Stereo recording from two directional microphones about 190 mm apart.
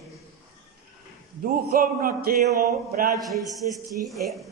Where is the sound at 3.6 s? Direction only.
45° right (ahead or behind).